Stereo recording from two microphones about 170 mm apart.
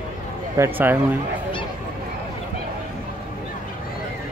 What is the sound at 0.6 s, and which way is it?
Speech, 10° right (ahead or behind).